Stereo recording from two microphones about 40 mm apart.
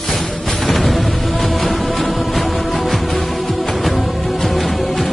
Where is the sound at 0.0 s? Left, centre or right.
Centre.